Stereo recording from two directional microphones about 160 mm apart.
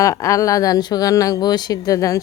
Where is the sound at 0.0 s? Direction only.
20° left (ahead or behind).